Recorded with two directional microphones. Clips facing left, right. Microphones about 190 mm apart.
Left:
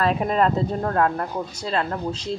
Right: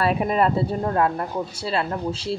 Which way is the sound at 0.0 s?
5° right (ahead or behind).